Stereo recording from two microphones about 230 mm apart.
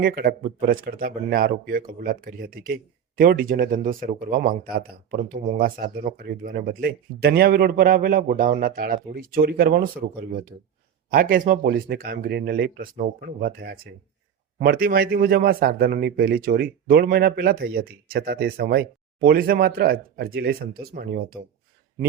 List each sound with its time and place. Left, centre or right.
0.0 s speech: right